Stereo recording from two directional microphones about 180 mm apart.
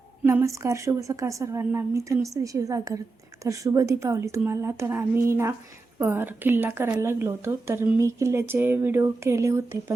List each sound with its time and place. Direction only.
0.3 s a woman's voice: 15° right (ahead or behind)